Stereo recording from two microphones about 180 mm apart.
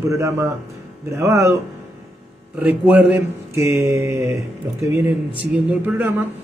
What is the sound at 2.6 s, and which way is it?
Speech, 10° right (ahead or behind).